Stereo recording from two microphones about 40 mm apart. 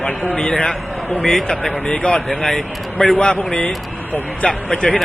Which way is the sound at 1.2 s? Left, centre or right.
Centre.